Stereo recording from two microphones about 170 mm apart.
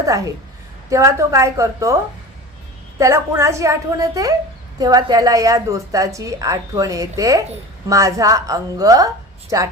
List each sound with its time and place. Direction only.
0.9 s a woman's voice: 20° right (ahead or behind)
3.0 s a woman's voice: 20° right (ahead or behind)